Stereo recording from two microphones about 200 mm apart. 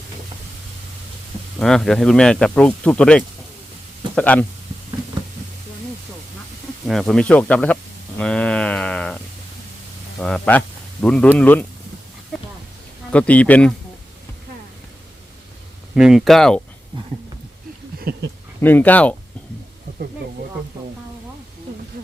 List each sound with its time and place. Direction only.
1.5 s speech: centre (ahead or behind)
6.8 s speech: centre (ahead or behind)
8.2 s a sound: 5° left (ahead or behind)
10.2 s speech: 5° left (ahead or behind)
13.1 s speech: 5° left (ahead or behind)
16.0 s speech: centre (ahead or behind)
18.1 s speech: 50° right (ahead or behind)
18.6 s speech: 10° left (ahead or behind)
22.0 s a sound: 45° right (ahead or behind)